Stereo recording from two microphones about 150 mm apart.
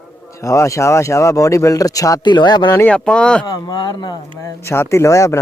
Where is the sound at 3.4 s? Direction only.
30° left (ahead or behind).